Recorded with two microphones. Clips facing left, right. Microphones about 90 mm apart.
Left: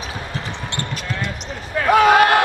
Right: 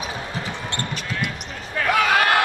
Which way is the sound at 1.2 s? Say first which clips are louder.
Left 1 dB; 25° left (ahead or behind).